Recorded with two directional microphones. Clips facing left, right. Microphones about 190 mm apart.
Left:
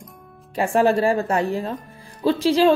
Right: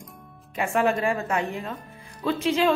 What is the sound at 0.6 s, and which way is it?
A woman's voice, 35° left (ahead or behind).